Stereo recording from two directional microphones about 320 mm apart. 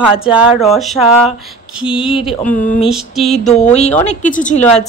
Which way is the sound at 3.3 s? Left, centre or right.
Left.